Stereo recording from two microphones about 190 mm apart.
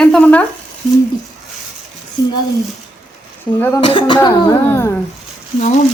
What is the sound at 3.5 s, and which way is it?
Speech, 10° left (ahead or behind).